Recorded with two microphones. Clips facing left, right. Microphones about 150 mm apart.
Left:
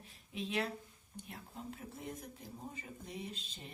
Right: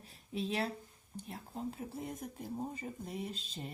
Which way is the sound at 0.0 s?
35° right (ahead or behind).